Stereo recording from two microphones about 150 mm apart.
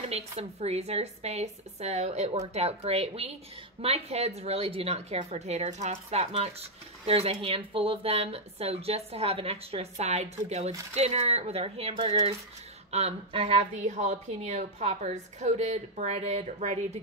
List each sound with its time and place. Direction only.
0.1 s speech: 45° right (ahead or behind)